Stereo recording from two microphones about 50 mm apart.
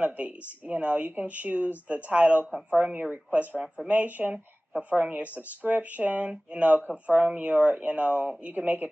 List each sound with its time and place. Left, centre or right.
0.0 s speech: right
3.6 s speech: centre
3.9 s speech: right